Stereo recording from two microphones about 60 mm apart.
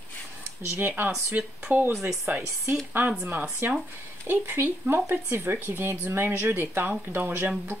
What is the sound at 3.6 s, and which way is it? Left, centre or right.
Speech, right.